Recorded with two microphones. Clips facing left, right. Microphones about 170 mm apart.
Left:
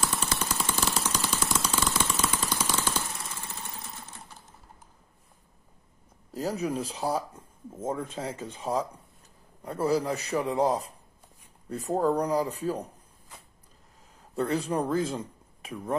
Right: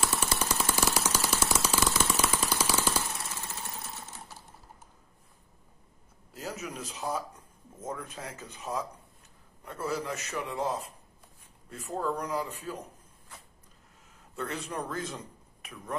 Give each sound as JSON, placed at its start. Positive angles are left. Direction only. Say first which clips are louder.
{"t": 0.0, "sound": "a sound", "louder": "even", "side_deg": -5}
{"t": 6.3, "sound": "a man's voice", "louder": "left 9 dB", "side_deg": 35}
{"t": 14.3, "sound": "a man's voice", "louder": "left 8 dB", "side_deg": 35}